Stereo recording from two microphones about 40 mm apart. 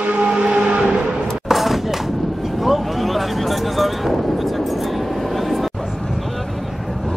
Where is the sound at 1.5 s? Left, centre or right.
Centre.